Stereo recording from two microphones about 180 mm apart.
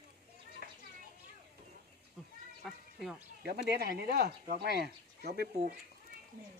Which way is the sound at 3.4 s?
60° right (ahead or behind).